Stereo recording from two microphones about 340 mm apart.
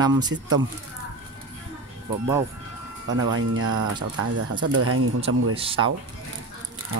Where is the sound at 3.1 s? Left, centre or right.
Right.